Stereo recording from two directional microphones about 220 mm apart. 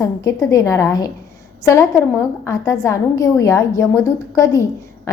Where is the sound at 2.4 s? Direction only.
15° left (ahead or behind).